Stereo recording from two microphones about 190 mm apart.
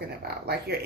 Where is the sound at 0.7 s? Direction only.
55° right (ahead or behind).